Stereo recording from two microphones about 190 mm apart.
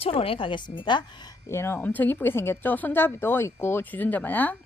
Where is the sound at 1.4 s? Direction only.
15° left (ahead or behind).